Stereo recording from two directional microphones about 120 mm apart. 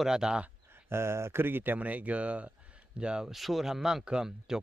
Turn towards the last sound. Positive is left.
turn(degrees=-5)  # may be behind; listen again after turning